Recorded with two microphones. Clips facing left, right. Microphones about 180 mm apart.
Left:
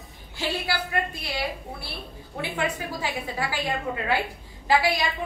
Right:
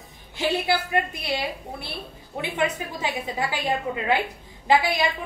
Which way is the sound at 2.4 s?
20° right (ahead or behind).